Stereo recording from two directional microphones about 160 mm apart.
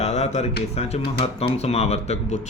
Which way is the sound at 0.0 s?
45° left (ahead or behind).